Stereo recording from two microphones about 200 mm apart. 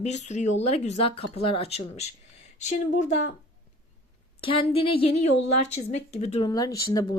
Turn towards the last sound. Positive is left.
turn(degrees=20)  # may be behind; listen again after turning